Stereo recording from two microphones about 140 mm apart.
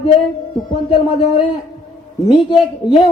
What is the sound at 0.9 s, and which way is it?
Speech, 40° left (ahead or behind).